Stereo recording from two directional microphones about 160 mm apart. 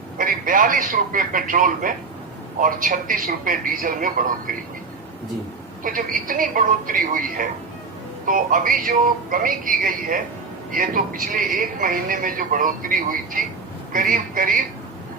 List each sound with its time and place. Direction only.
0.2 s a man's voice: 60° right (ahead or behind)
5.8 s a man's voice: 60° right (ahead or behind)